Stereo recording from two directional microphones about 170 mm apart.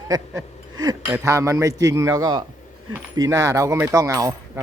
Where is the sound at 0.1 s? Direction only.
20° right (ahead or behind).